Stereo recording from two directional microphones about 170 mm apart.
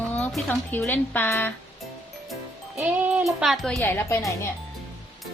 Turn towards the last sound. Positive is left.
turn(degrees=15)  # may be behind; listen again after turning